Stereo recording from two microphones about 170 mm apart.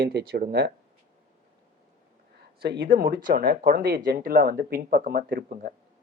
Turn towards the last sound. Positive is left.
turn(degrees=-55)  # may be behind; listen again after turning